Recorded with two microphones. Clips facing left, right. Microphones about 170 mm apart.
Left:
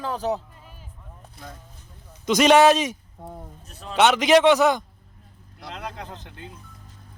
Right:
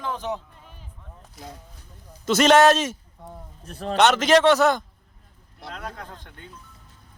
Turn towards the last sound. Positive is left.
turn(degrees=20)  # may be behind; listen again after turning